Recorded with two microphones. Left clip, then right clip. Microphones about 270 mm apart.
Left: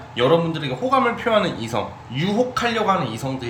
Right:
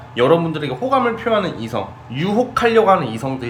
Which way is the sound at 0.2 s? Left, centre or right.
Centre.